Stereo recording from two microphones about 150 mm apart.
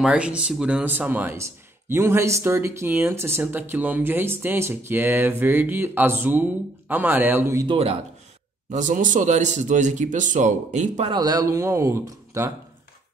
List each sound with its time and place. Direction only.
0.0 s speech: 5° right (ahead or behind)
7.6 s speech: 40° right (ahead or behind)
8.6 s speech: 55° right (ahead or behind)
11.1 s speech: 25° right (ahead or behind)